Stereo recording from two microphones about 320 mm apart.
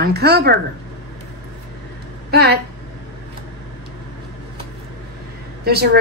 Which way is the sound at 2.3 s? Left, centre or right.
Right.